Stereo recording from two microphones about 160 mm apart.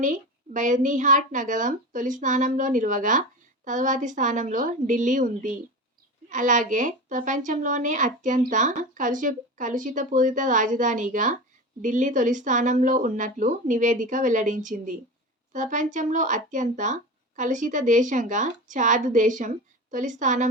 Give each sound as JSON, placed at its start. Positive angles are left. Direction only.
{"t": 0.0, "sound": "a woman's voice", "side_deg": -50}